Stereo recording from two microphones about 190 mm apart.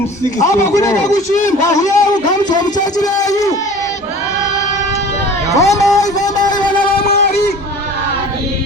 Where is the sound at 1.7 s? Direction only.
20° left (ahead or behind).